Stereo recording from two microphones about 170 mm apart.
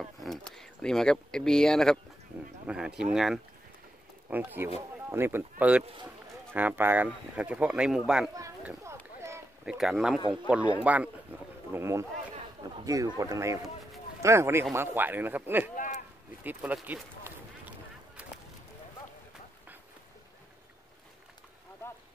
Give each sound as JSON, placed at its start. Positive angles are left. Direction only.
{"t": 0.0, "sound": "a sound", "side_deg": 0}
{"t": 0.5, "sound": "speech", "side_deg": 5}
{"t": 8.6, "sound": "a sound", "side_deg": -15}
{"t": 9.7, "sound": "speech", "side_deg": 0}
{"t": 15.7, "sound": "speech", "side_deg": 50}
{"t": 16.4, "sound": "run", "side_deg": -10}